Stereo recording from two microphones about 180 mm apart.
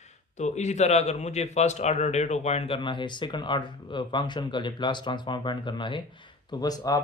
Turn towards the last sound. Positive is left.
turn(degrees=20)  # may be behind; listen again after turning